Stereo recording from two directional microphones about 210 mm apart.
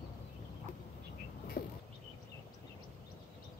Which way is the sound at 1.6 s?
45° left (ahead or behind).